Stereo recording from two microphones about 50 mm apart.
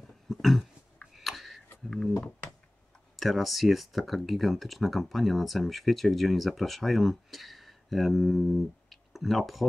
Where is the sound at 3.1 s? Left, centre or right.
Centre.